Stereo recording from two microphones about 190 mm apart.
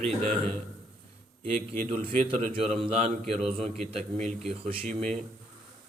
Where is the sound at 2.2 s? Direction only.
30° right (ahead or behind).